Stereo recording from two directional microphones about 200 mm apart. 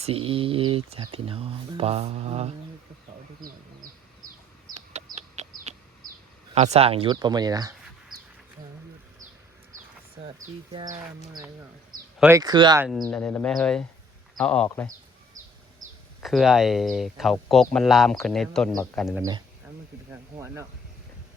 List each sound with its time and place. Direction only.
0.0 s speech: 30° right (ahead or behind)
4.7 s chicken: 35° right (ahead or behind)
6.5 s speech: 30° right (ahead or behind)
10.2 s speech: 25° right (ahead or behind)
12.4 s speech: 20° right (ahead or behind)
12.8 s speech: centre (ahead or behind)
15.3 s a sound: 15° right (ahead or behind)
16.2 s speech: centre (ahead or behind)
19.1 s speech: 15° right (ahead or behind)